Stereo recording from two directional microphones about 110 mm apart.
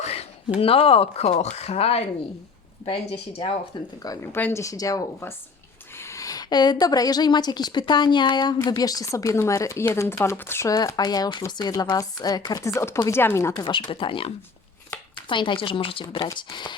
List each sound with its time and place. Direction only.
0.0 s speech: 80° left; by 3.6 s 60° left (ahead or behind)
4.2 s speech: 20° left (ahead or behind)
4.6 s a woman's voice: 30° left (ahead or behind)
10.8 s speech: 35° left (ahead or behind)
13.7 s speech: 45° left (ahead or behind)